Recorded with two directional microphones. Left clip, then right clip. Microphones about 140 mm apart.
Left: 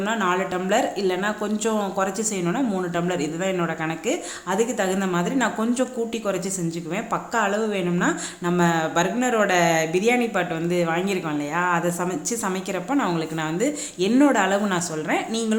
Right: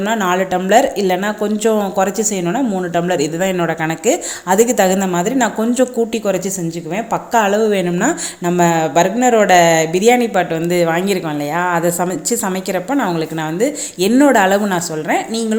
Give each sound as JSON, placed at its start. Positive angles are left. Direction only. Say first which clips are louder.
{"t": 0.0, "sound": "a woman's voice", "louder": "right 7 dB", "side_deg": -35}